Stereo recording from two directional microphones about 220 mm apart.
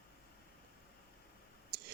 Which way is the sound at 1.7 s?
45° right (ahead or behind).